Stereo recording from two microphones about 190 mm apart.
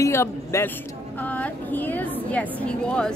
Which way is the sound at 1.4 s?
10° left (ahead or behind).